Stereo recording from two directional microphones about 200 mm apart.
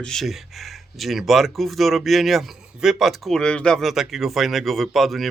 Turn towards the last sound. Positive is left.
turn(degrees=0)  # may be behind; listen again after turning